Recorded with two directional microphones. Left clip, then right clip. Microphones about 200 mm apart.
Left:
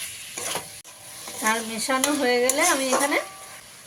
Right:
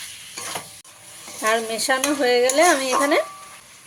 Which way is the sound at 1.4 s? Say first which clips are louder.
Right 4 dB; 45° right (ahead or behind).